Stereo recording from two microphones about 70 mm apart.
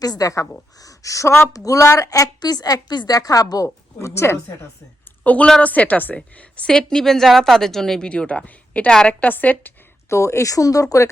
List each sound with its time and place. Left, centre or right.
0.0 s a woman's voice: left
5.2 s a woman's voice: left
8.9 s speech: centre
9.2 s speech: left
10.1 s speech: left